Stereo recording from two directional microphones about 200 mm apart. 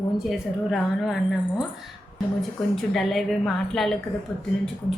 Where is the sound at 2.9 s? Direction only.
Centre (ahead or behind).